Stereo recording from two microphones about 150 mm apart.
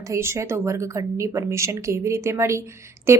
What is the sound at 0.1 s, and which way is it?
A woman's voice, 20° right (ahead or behind).